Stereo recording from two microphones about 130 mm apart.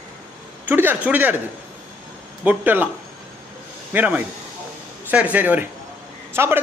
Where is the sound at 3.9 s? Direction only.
10° right (ahead or behind).